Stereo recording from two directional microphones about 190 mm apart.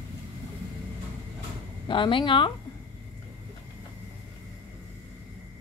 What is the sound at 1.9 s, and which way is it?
Speech, 25° left (ahead or behind).